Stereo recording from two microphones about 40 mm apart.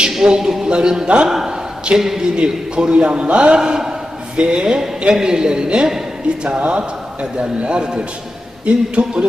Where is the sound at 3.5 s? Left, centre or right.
Centre.